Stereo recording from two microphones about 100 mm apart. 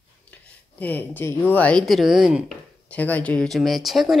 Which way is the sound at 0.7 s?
15° left (ahead or behind).